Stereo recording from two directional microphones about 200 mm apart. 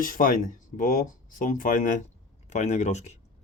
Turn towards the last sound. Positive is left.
turn(degrees=35)  # may be behind; listen again after turning